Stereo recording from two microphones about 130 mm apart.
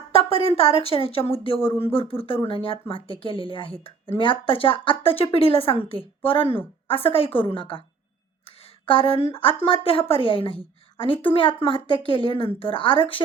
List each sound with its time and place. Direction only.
0.2 s a woman's voice: 45° left (ahead or behind)
8.9 s a woman's voice: 45° left (ahead or behind)